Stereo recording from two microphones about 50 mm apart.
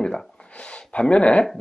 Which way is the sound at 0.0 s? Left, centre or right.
Centre.